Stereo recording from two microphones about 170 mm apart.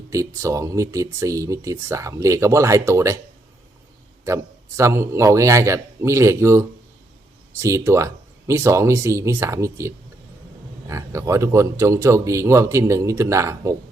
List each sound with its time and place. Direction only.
0.1 s speech: 20° right (ahead or behind)
4.3 s speech: 20° right (ahead or behind)